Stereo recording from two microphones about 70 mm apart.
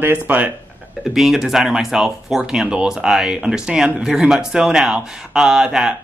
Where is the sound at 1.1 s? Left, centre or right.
Centre.